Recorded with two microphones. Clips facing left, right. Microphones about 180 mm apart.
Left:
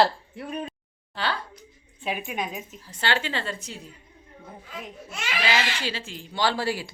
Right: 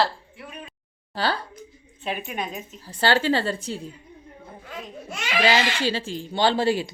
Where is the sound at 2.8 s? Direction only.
35° right (ahead or behind).